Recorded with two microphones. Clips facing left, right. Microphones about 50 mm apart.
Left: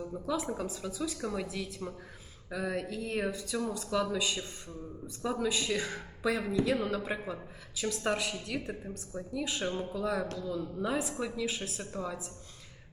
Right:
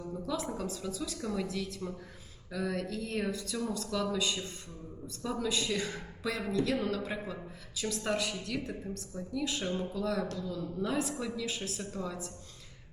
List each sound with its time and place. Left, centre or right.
0.0 s a woman's voice: centre